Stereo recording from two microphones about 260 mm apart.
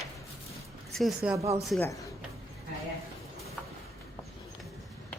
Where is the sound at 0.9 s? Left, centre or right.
Centre.